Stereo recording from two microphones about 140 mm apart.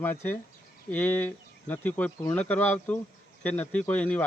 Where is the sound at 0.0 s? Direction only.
15° left (ahead or behind).